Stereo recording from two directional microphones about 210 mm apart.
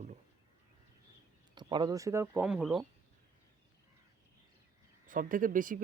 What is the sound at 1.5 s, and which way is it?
Speech, 20° right (ahead or behind).